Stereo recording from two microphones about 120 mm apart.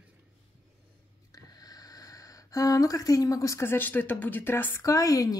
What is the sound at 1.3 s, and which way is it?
Speech, 30° left (ahead or behind).